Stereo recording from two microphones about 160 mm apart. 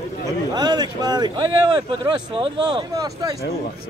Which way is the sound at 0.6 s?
25° right (ahead or behind).